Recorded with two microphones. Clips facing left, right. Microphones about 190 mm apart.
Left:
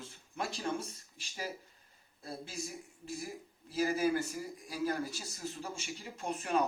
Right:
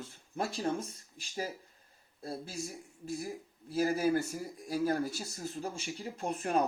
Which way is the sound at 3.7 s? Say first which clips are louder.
Right 2 dB; 45° right (ahead or behind).